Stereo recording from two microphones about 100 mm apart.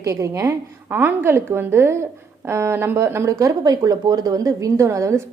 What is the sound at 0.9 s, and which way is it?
A woman's voice, 20° right (ahead or behind).